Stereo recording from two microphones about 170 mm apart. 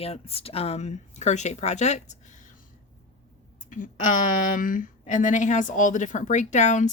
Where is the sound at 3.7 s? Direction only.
50° left (ahead or behind).